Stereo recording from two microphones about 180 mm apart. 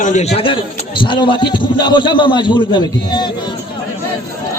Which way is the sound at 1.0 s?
25° left (ahead or behind).